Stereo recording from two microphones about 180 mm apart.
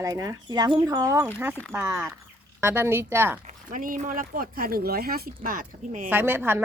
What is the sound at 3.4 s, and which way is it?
Speech, 50° right (ahead or behind).